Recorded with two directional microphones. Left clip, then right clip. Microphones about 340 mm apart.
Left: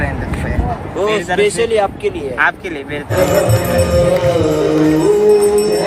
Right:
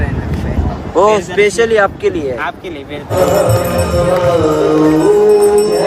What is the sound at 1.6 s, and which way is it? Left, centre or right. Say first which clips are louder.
Speech: right 3 dB; right.